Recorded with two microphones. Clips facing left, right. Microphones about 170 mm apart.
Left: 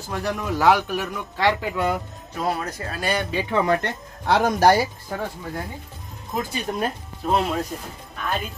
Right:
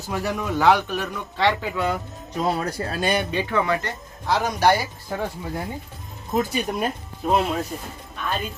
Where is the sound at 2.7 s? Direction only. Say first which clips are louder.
Right 4 dB; 30° right (ahead or behind).